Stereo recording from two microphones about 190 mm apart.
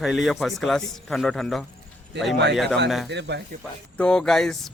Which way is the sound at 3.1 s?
65° right (ahead or behind).